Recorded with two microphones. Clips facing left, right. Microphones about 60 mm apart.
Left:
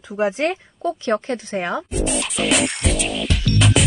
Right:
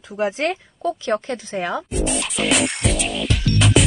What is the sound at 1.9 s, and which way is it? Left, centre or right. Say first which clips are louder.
Music: even; centre.